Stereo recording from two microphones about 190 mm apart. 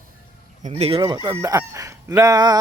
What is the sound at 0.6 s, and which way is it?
Speech, 35° right (ahead or behind).